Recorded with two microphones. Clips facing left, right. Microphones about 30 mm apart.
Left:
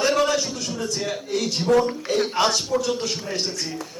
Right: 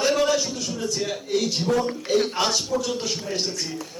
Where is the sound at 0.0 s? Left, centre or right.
Centre.